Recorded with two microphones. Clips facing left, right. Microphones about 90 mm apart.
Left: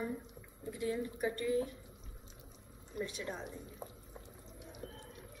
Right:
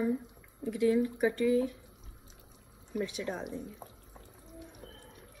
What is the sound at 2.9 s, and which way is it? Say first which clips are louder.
Speech: right 6 dB; 75° right (ahead or behind).